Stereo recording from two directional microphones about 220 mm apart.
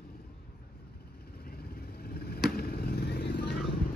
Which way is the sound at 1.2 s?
45° left (ahead or behind).